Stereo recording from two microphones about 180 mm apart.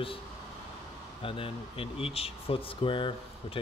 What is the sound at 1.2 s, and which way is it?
Speech, 30° left (ahead or behind).